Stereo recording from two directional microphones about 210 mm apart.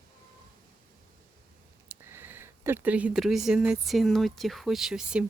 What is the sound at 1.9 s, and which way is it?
Speech, 10° right (ahead or behind).